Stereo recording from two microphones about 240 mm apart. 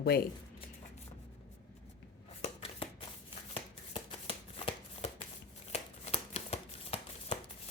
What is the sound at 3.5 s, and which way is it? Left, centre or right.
Shuffling cards, left.